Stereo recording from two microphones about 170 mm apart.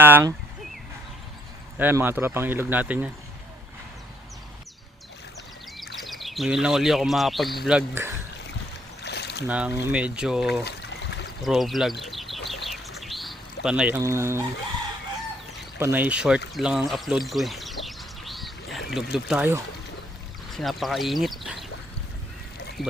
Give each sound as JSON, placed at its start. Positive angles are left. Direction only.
{"t": 0.0, "sound": "speech", "side_deg": -15}
{"t": 1.8, "sound": "speech", "side_deg": -10}
{"t": 6.0, "sound": "speech", "side_deg": 0}
{"t": 9.0, "sound": "boat", "side_deg": 80}
{"t": 9.5, "sound": "speech", "side_deg": -10}
{"t": 10.6, "sound": "trickle", "side_deg": 85}
{"t": 11.4, "sound": "speech", "side_deg": 0}
{"t": 12.7, "sound": "bird", "side_deg": 0}
{"t": 14.0, "sound": "speech", "side_deg": -15}
{"t": 15.8, "sound": "speech", "side_deg": -10}
{"t": 16.6, "sound": "bird", "side_deg": 0}
{"t": 19.1, "sound": "speech", "side_deg": -5}
{"t": 20.5, "sound": "speech", "side_deg": 0}
{"t": 22.8, "sound": "speech", "side_deg": 0}